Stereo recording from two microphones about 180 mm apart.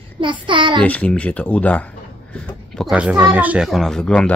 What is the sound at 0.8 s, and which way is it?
Speech, 5° left (ahead or behind).